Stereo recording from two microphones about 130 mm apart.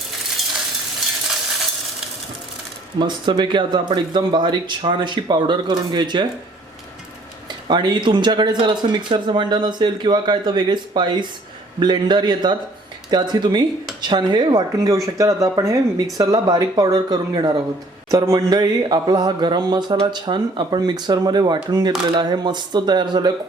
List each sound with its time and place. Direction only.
3.0 s speech: 35° right (ahead or behind)
7.7 s speech: 35° right (ahead or behind)